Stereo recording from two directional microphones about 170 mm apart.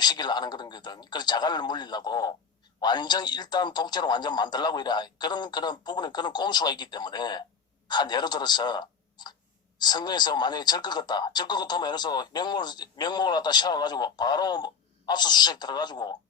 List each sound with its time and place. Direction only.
0.0 s speech: 25° left (ahead or behind)